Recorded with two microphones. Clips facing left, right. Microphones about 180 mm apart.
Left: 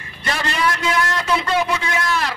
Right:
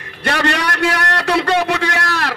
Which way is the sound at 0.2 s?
70° right (ahead or behind).